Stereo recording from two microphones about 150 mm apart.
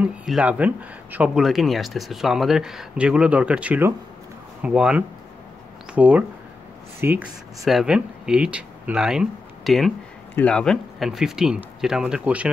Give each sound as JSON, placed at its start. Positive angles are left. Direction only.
{"t": 0.0, "sound": "speech", "side_deg": -5}
{"t": 7.6, "sound": "speech", "side_deg": -5}